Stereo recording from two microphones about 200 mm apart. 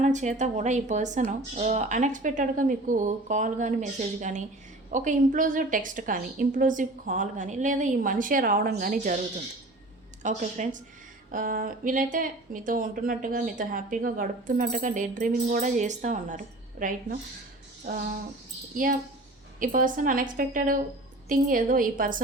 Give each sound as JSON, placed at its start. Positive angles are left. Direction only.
{"t": 0.0, "sound": "speech", "side_deg": -35}
{"t": 10.2, "sound": "speech", "side_deg": -40}
{"t": 19.5, "sound": "a woman's voice", "side_deg": -40}